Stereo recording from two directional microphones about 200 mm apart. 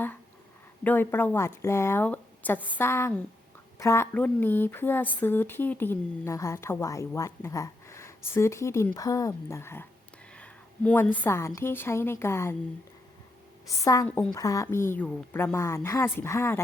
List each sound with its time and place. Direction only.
0.9 s a woman's voice: 10° left (ahead or behind)
13.7 s speech: 15° left (ahead or behind)